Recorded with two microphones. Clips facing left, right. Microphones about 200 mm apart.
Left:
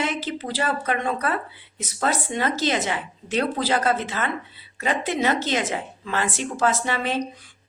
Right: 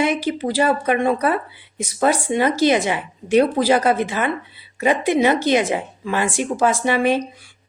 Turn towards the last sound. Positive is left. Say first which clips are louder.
# right 7 dB
turn(degrees=-10)  # may be behind; listen again after turning